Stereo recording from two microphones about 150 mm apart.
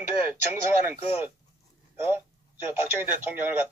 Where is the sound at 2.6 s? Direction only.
15° right (ahead or behind).